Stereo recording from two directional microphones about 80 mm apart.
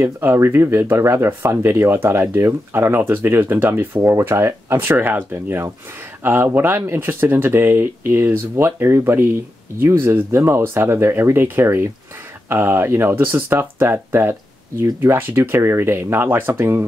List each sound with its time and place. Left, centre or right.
0.0 s speech: right